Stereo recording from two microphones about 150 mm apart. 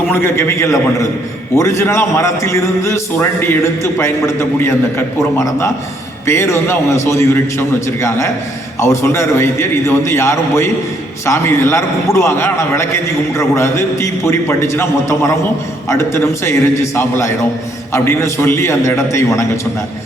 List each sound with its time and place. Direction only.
0.1 s a man's voice: 15° left (ahead or behind)